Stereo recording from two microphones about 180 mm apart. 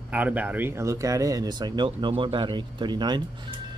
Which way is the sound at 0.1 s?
10° right (ahead or behind).